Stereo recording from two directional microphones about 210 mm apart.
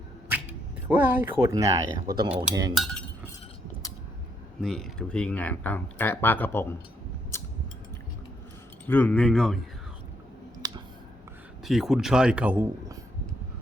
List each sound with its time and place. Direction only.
0.9 s speech: 10° right (ahead or behind)
2.7 s speech: centre (ahead or behind)
4.6 s speech: centre (ahead or behind)
7.3 s a sound: 15° left (ahead or behind)
8.9 s speech: 10° left (ahead or behind)
10.6 s a sound: 15° right (ahead or behind)
11.6 s speech: centre (ahead or behind)